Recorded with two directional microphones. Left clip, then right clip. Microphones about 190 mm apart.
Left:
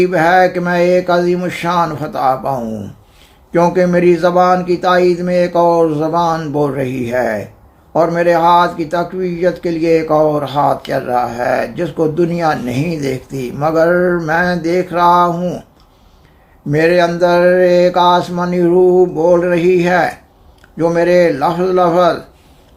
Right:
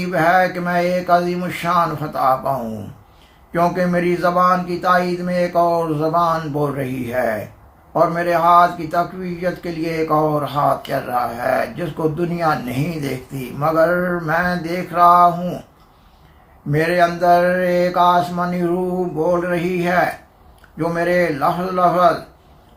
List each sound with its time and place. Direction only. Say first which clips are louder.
0.0 s speech: left 5 dB; 45° left (ahead or behind)
3.5 s speech: left 6 dB; 50° left (ahead or behind)
16.7 s speech: left 5 dB; 45° left (ahead or behind)